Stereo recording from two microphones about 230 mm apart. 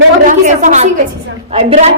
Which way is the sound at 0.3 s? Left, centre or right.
Right.